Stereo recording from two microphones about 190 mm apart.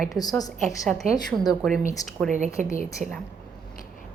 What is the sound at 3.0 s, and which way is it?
Speech, 40° right (ahead or behind).